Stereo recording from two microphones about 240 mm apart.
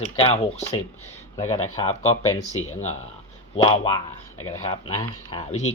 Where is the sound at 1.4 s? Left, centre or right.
Left.